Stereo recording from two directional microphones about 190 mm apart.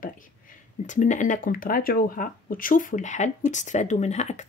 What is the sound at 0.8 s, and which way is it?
Speech, 40° left (ahead or behind).